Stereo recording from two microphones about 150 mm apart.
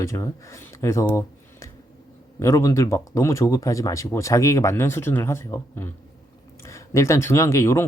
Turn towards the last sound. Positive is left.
turn(degrees=15)  # may be behind; listen again after turning